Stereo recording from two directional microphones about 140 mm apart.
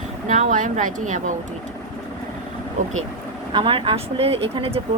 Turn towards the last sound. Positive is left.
turn(degrees=-45)  # may be behind; listen again after turning